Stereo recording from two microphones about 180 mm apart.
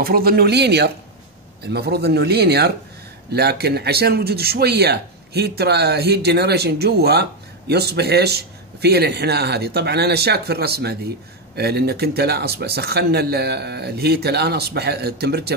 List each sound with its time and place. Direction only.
0.0 s a man's voice: 55° right (ahead or behind)